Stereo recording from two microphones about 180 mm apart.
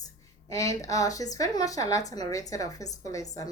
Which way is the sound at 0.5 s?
20° left (ahead or behind).